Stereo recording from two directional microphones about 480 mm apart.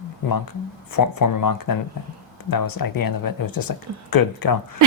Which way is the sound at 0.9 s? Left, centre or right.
Left.